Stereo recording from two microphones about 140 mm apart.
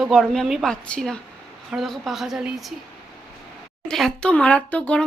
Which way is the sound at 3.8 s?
5° left (ahead or behind).